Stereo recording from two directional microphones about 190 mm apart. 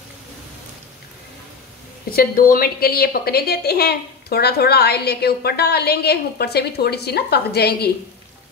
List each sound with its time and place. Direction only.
2.0 s a woman's voice: 50° left (ahead or behind)